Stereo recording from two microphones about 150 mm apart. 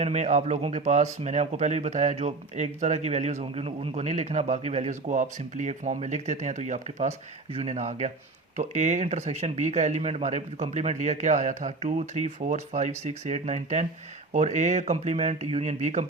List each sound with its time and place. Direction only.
0.0 s speech: 50° right (ahead or behind)